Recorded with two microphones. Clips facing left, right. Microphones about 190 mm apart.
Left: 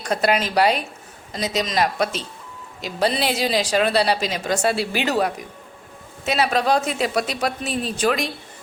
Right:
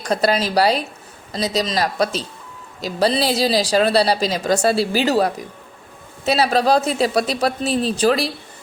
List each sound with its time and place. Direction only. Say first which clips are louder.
0.0 s a woman's voice: right 2 dB; 35° right (ahead or behind)